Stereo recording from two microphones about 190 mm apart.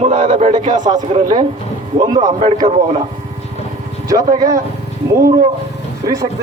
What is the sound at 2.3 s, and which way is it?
Speech, 35° right (ahead or behind).